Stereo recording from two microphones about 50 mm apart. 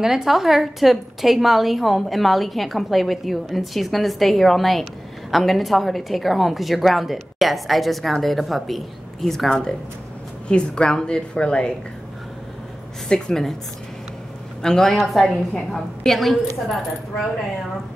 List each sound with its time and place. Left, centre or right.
0.0 s a woman's voice: centre
10.5 s a woman's voice: centre
13.1 s a woman's voice: centre
14.6 s speech: centre
14.9 s a woman's voice: centre